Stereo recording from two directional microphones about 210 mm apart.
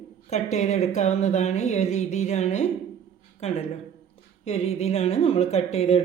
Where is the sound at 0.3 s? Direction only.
35° left (ahead or behind).